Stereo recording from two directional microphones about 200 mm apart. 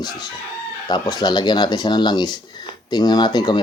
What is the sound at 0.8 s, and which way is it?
Speech, 20° left (ahead or behind).